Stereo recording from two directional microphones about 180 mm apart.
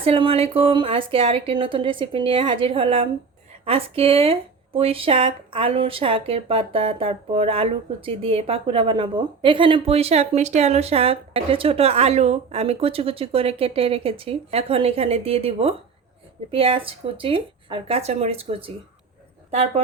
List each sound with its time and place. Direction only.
0.0 s a woman's voice: 30° right (ahead or behind)